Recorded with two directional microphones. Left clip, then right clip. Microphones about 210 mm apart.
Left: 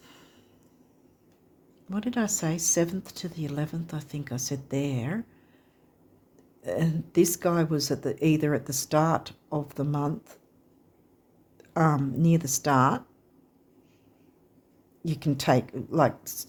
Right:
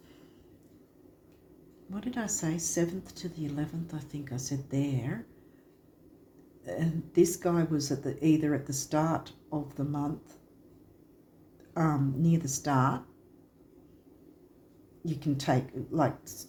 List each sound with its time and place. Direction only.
1.9 s speech: 55° left (ahead or behind)
6.6 s speech: 55° left (ahead or behind)
11.7 s speech: 50° left (ahead or behind)
15.0 s speech: 50° left (ahead or behind)